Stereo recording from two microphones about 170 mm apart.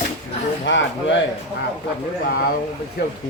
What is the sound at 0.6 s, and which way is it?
Speech, 90° left.